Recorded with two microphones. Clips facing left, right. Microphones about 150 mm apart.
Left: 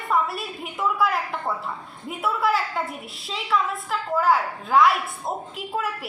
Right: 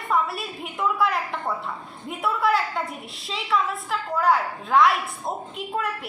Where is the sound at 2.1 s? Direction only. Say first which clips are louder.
Right 1 dB; centre (ahead or behind).